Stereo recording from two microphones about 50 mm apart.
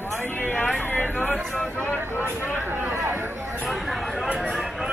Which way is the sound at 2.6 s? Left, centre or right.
Right.